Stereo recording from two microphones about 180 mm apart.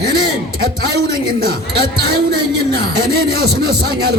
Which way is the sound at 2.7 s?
60° right (ahead or behind).